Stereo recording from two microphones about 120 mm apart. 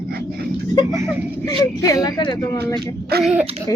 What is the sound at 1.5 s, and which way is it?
Speech, 30° left (ahead or behind).